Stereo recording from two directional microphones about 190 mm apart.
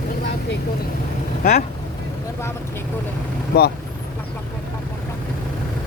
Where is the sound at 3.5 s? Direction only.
60° left (ahead or behind).